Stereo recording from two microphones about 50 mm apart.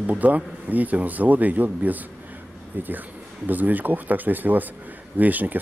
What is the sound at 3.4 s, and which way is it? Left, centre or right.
Speech, right.